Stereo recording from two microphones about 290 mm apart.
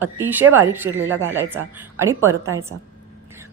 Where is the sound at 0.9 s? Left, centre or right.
Right.